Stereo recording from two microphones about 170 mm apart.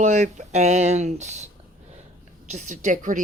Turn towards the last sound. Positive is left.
turn(degrees=-50)  # may be behind; listen again after turning